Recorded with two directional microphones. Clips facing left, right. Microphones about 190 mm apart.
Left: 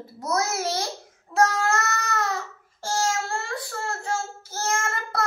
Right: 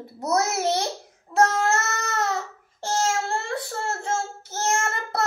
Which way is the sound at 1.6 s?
25° right (ahead or behind).